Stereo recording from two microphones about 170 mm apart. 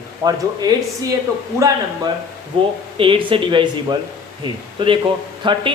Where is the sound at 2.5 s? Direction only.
30° right (ahead or behind).